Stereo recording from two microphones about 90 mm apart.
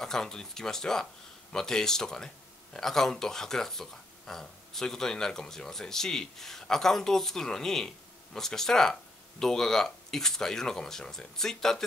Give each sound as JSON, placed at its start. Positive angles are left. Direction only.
{"t": 0.0, "sound": "speech", "side_deg": 5}